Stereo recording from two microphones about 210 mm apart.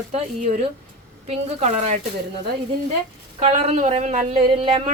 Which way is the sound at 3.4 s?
30° right (ahead or behind).